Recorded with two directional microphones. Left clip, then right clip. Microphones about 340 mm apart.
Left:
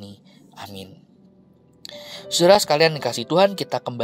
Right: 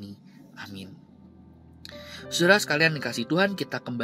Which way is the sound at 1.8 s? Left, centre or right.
Centre.